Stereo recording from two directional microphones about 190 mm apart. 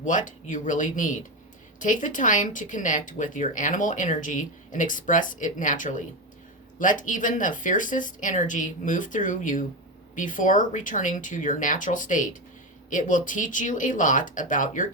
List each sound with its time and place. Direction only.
0.0 s speech: 45° left (ahead or behind)